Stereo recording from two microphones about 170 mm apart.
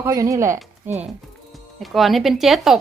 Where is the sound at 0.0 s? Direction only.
20° right (ahead or behind).